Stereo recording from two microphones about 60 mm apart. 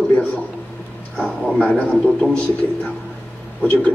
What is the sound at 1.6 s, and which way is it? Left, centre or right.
Speech, left.